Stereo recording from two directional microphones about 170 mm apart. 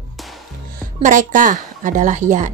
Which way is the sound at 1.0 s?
50° right (ahead or behind).